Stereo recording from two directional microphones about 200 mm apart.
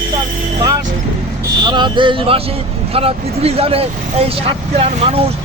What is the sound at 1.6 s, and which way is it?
Speech, 25° right (ahead or behind).